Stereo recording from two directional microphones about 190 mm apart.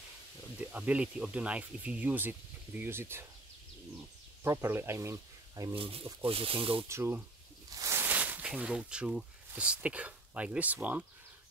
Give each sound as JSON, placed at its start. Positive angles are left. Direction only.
{"t": 0.7, "sound": "speech", "side_deg": -5}
{"t": 4.4, "sound": "speech", "side_deg": -15}
{"t": 5.8, "sound": "speech", "side_deg": -30}
{"t": 6.9, "sound": "speech", "side_deg": -10}